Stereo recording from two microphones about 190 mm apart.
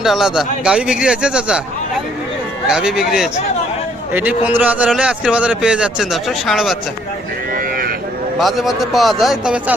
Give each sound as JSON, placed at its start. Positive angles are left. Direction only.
{"t": 0.0, "sound": "a man's voice", "side_deg": 0}
{"t": 2.6, "sound": "a man's voice", "side_deg": -5}
{"t": 7.5, "sound": "livestock", "side_deg": -50}
{"t": 8.4, "sound": "a man's voice", "side_deg": 0}